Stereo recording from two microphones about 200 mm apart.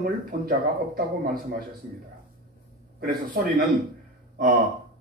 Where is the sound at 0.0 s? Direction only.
45° right (ahead or behind).